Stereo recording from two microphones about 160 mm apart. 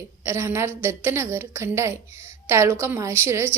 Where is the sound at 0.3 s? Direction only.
15° right (ahead or behind).